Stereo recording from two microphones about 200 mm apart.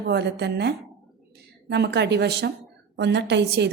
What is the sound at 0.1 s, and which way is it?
A woman's voice, 55° right (ahead or behind).